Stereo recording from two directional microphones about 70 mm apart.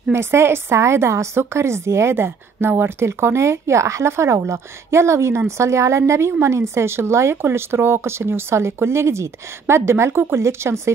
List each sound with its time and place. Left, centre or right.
0.1 s a woman's voice: right